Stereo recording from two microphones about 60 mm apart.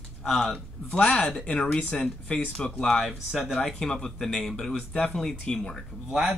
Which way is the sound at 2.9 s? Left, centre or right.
Centre.